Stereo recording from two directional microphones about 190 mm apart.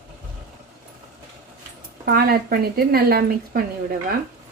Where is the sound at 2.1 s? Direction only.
55° right (ahead or behind).